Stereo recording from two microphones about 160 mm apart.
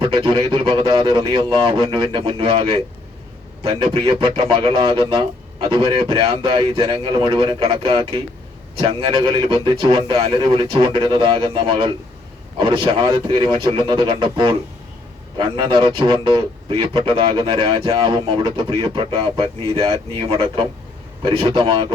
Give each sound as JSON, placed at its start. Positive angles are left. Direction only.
{"t": 0.0, "sound": "a man's voice", "side_deg": -35}